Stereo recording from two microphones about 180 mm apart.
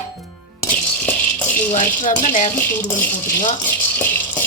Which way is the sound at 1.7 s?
45° left (ahead or behind).